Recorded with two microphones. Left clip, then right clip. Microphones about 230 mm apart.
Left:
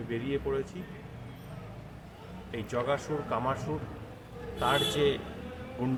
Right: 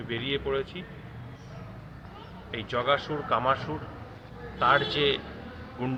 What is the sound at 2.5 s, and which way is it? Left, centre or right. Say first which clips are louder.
Speech: right 5 dB; centre.